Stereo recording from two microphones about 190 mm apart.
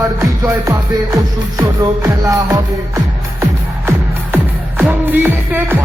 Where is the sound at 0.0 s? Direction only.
20° right (ahead or behind).